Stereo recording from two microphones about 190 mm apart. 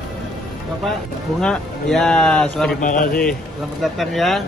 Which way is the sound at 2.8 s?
45° left (ahead or behind).